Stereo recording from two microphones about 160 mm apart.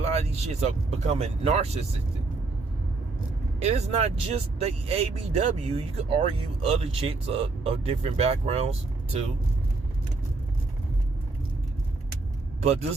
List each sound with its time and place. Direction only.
0.0 s speech: 45° right (ahead or behind)
3.6 s speech: 40° right (ahead or behind)